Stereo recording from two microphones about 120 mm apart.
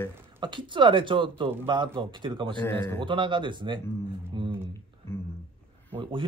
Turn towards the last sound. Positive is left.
turn(degrees=-50)  # may be behind; listen again after turning